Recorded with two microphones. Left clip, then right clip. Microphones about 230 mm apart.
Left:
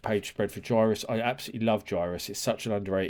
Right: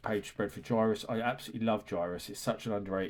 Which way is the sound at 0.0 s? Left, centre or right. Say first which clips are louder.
Left 5 dB; left.